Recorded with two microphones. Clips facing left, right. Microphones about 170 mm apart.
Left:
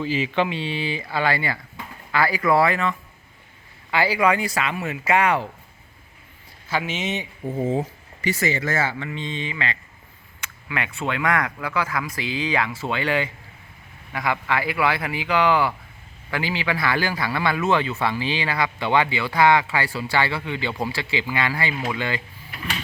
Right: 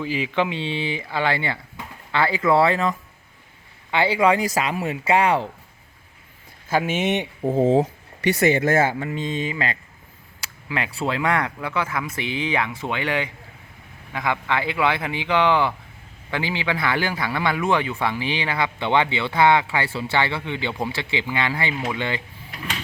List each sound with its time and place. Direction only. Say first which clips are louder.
0.0 s speech: left 1 dB; 15° right (ahead or behind); by 2.9 s 30° right (ahead or behind)
3.9 s speech: right 2 dB; 25° right (ahead or behind)
6.7 s speech: right 5 dB; 50° right (ahead or behind)
10.4 s speech: right 2 dB; 30° right (ahead or behind)